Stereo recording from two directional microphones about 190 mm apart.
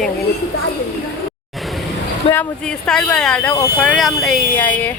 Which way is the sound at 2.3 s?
5° left (ahead or behind).